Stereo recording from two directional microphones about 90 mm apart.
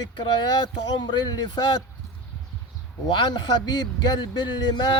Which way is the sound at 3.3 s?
50° left (ahead or behind).